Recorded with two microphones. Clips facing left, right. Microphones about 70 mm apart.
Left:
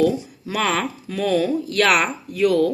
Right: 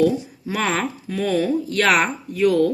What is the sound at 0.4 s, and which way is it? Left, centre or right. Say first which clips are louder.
Speech: left 1 dB; right.